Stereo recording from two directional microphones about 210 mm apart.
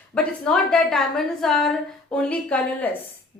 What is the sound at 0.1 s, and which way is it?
A woman's voice, 5° left (ahead or behind).